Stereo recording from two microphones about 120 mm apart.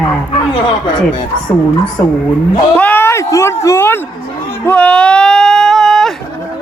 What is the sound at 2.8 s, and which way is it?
Speech, 15° left (ahead or behind).